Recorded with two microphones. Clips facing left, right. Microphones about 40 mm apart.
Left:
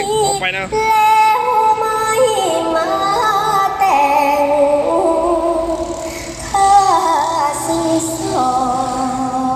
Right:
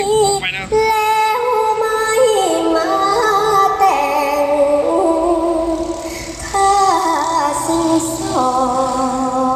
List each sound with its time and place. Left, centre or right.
0.8 s yodeling: left
1.6 s music: left
6.9 s music: left